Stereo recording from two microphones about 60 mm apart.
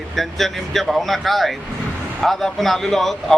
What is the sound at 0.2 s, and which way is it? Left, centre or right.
A man's voice, centre.